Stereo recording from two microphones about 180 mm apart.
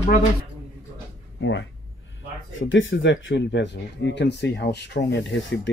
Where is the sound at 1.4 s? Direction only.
85° left.